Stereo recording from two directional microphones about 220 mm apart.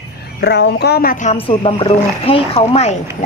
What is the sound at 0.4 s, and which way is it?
Speech, 50° left (ahead or behind).